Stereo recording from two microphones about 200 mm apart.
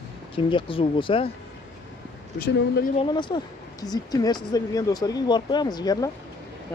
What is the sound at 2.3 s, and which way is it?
Speech, 55° left (ahead or behind).